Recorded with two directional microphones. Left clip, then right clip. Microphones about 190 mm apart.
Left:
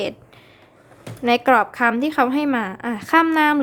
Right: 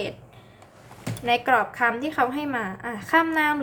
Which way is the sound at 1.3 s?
50° left (ahead or behind).